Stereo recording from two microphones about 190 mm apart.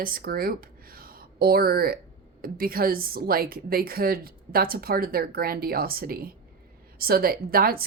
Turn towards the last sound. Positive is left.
turn(degrees=-50)  # may be behind; listen again after turning